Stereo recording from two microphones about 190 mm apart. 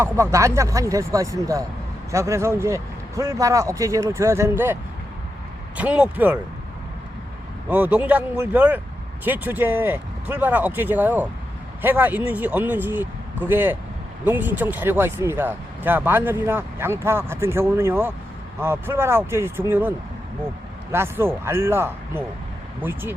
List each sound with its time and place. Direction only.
0.0 s speech: 15° right (ahead or behind)
7.7 s speech: 5° right (ahead or behind)
20.9 s speech: 15° right (ahead or behind)